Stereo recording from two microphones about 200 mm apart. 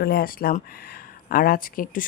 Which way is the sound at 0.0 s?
50° left (ahead or behind).